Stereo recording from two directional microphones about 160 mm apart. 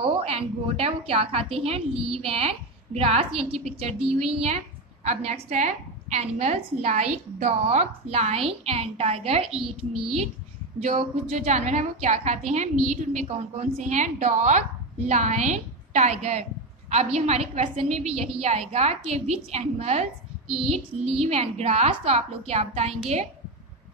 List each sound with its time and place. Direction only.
0.0 s a woman's voice: 40° right (ahead or behind)